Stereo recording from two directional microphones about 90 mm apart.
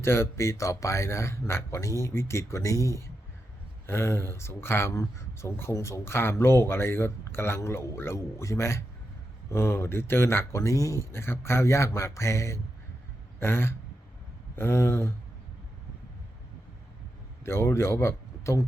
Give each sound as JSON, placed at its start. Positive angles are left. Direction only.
{"t": 0.0, "sound": "a man's voice", "side_deg": 30}
{"t": 17.4, "sound": "speech", "side_deg": 30}